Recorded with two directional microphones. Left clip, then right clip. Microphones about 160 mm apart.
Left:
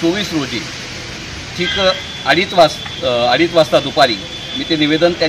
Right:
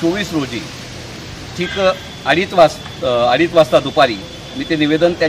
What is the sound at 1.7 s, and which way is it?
Speech, 25° right (ahead or behind).